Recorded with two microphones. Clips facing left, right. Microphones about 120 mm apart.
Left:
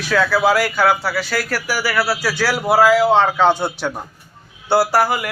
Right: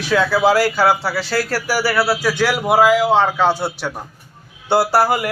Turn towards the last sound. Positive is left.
turn(degrees=-25)  # may be behind; listen again after turning